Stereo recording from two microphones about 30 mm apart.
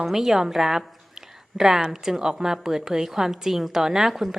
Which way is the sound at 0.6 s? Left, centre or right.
Centre.